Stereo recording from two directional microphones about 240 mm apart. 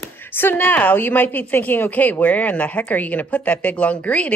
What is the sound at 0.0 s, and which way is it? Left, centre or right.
A woman's voice, centre.